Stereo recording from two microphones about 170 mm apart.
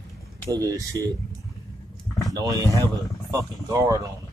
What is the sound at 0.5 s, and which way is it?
Speech, 20° right (ahead or behind).